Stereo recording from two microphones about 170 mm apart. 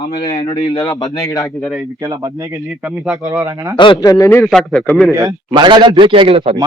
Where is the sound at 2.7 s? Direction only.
5° right (ahead or behind).